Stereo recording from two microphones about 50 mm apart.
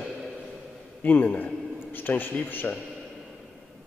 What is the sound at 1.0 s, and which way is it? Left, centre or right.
A man's voice, left.